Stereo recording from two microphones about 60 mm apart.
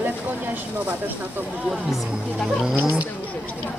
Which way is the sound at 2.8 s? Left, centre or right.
Right.